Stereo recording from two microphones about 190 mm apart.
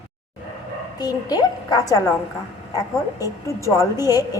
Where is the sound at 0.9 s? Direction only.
20° left (ahead or behind).